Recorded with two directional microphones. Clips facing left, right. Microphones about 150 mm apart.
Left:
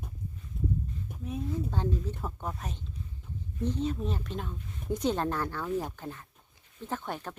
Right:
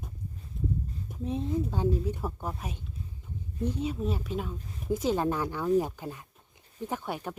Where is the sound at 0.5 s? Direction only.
Centre (ahead or behind).